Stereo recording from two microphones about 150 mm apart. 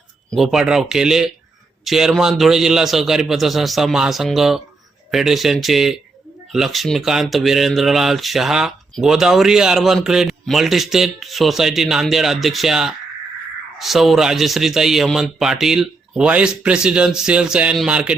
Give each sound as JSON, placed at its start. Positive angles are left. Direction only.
{"t": 0.3, "sound": "speech", "side_deg": 0}